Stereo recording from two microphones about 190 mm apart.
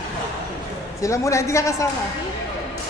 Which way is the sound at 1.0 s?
15° left (ahead or behind).